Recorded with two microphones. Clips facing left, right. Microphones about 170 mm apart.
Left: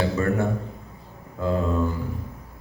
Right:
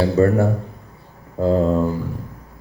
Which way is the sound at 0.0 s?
35° right (ahead or behind).